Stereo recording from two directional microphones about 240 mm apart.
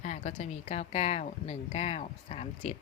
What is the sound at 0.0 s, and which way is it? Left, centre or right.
Speech, left.